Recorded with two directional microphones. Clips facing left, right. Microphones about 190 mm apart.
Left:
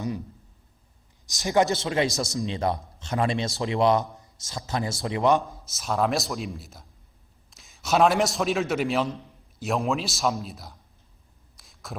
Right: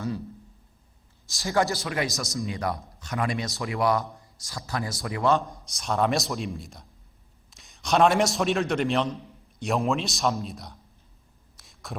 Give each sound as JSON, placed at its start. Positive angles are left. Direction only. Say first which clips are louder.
{"t": 1.3, "sound": "a man's voice", "louder": "left 3 dB", "side_deg": 20}
{"t": 5.6, "sound": "a man's voice", "louder": "even", "side_deg": 5}
{"t": 11.5, "sound": "a sound", "louder": "right 1 dB", "side_deg": 0}